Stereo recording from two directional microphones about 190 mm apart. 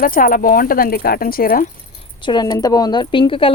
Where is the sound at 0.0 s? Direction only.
45° left (ahead or behind).